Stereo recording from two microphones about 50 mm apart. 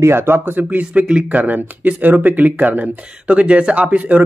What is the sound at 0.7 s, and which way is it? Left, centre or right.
Speech, right.